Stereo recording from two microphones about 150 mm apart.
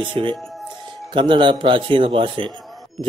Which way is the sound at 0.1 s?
30° right (ahead or behind).